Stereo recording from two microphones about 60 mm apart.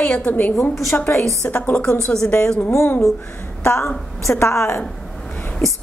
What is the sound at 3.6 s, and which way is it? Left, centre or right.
A woman's voice, left.